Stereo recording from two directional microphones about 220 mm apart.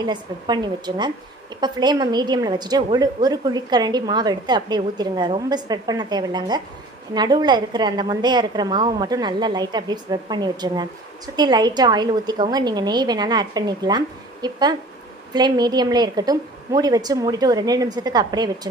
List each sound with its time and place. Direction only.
0.0 s a woman's voice: 20° right (ahead or behind)